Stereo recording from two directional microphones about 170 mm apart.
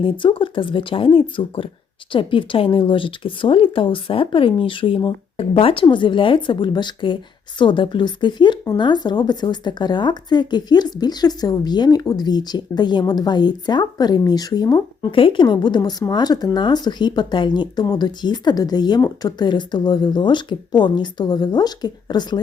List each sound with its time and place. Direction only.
0.0 s speech: 30° left (ahead or behind)